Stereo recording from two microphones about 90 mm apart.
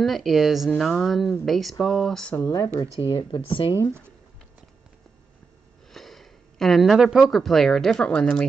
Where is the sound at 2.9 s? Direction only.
75° left (ahead or behind).